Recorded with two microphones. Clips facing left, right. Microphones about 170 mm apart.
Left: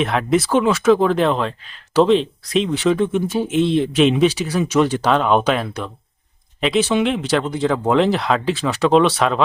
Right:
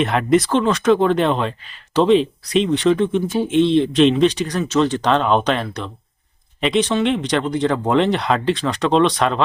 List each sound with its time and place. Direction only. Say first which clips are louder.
0.0 s speech: right 2 dB; centre (ahead or behind)